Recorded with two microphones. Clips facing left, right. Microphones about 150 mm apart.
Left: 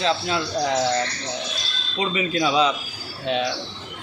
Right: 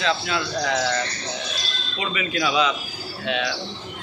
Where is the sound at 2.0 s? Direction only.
30° left (ahead or behind).